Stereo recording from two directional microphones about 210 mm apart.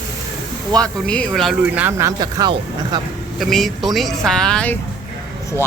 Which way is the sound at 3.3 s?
Centre (ahead or behind).